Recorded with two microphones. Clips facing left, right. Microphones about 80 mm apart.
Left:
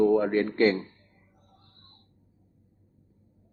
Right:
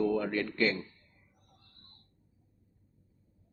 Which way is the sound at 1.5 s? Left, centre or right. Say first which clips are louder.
Left 3 dB; left.